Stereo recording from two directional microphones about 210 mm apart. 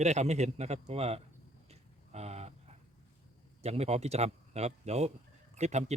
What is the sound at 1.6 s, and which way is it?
Livestock, 30° right (ahead or behind).